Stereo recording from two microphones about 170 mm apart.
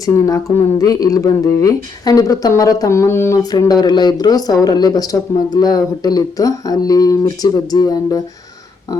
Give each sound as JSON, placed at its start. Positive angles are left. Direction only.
{"t": 0.0, "sound": "a woman's voice", "side_deg": 20}